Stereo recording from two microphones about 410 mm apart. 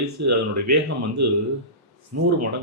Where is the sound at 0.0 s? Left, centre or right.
Right.